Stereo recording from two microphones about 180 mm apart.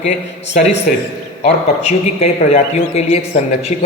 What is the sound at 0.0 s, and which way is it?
Speech, 40° left (ahead or behind).